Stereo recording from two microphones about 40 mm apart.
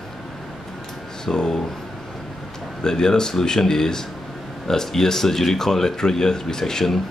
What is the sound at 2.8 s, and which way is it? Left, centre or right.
Speech, centre.